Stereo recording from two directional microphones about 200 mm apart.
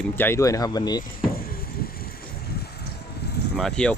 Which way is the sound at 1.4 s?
50° left (ahead or behind).